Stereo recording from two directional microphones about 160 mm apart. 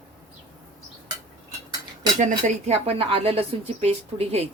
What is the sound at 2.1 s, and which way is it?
Speech, 45° right (ahead or behind).